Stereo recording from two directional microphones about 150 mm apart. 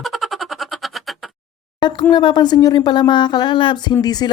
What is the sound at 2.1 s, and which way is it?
Speech, 30° left (ahead or behind).